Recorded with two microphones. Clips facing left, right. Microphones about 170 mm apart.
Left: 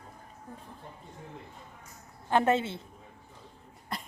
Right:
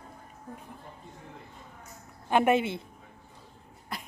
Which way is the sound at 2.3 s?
15° right (ahead or behind).